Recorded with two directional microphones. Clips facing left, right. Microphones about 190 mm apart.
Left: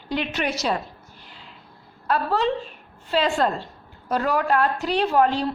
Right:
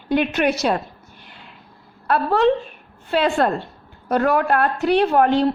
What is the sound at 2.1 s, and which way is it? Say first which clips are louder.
A woman's voice: right 5 dB; 60° right (ahead or behind).